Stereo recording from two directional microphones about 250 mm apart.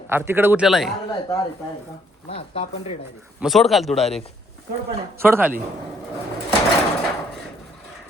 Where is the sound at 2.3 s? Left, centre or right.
Left.